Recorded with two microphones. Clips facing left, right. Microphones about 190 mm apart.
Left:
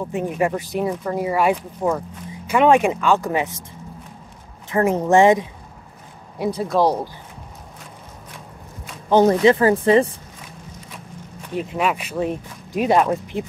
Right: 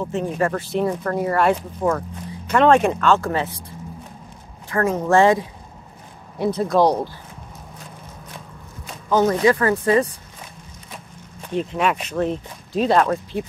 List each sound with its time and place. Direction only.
0.0 s speech: 15° left (ahead or behind)
4.6 s speech: 20° left (ahead or behind)
6.3 s speech: 5° left (ahead or behind)
9.1 s speech: 30° left (ahead or behind)
11.5 s speech: 5° left (ahead or behind)